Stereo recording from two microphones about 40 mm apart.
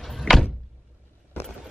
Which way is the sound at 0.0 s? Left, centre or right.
Centre.